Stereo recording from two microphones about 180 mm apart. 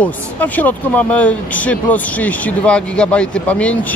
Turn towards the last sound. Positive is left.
turn(degrees=5)  # may be behind; listen again after turning